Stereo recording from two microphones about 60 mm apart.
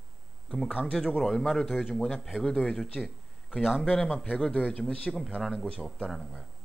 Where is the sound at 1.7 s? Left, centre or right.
Centre.